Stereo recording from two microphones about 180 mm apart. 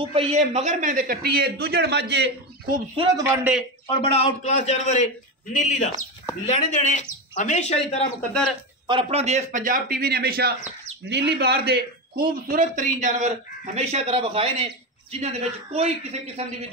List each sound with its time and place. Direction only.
0.0 s speech: 30° right (ahead or behind); by 2.7 s 70° right (ahead or behind)
2.7 s speech: 25° right (ahead or behind)
3.3 s a man's voice: 10° right (ahead or behind)
4.1 s speech: 40° left (ahead or behind)
8.3 s speech: 5° left (ahead or behind)
8.8 s a man's voice: 30° right (ahead or behind); by 10.5 s 60° right (ahead or behind)
11.1 s speech: 70° right (ahead or behind)
12.4 s a man's voice: 50° right (ahead or behind)